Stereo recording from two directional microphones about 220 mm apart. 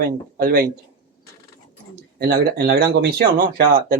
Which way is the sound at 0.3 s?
40° right (ahead or behind).